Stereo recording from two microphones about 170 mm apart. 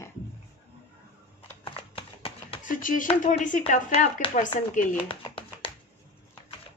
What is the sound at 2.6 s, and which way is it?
Speech, 50° left (ahead or behind).